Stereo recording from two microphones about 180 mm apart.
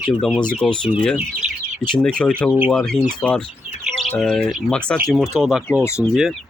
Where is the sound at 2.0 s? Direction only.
5° left (ahead or behind).